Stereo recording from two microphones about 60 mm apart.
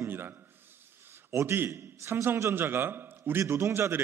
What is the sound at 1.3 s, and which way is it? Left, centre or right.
A man's voice, right.